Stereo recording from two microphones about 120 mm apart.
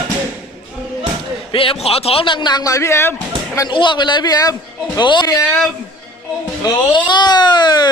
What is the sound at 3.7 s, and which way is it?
Speech, 40° left (ahead or behind).